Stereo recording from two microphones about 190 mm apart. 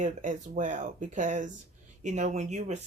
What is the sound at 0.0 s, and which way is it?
Speech, 40° right (ahead or behind).